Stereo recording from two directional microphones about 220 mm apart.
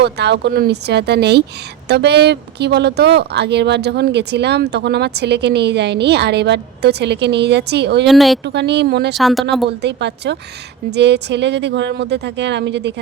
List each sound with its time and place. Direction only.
0.0 s speech: 50° right (ahead or behind)
8.0 s speech: centre (ahead or behind)
8.4 s speech: 50° right (ahead or behind)
9.1 s speech: centre (ahead or behind)
9.6 s speech: 50° right (ahead or behind)